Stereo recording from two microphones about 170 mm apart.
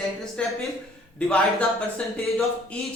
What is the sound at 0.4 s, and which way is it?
Speech, 5° left (ahead or behind).